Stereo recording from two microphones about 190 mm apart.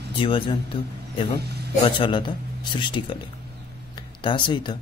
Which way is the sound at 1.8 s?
25° left (ahead or behind).